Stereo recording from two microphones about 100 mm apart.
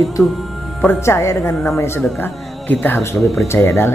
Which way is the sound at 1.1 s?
30° left (ahead or behind).